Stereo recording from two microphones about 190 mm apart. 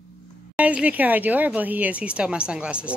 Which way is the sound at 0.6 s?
5° right (ahead or behind).